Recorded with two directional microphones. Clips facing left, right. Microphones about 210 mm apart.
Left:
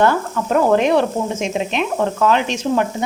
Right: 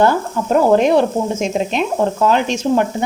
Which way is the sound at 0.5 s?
35° right (ahead or behind).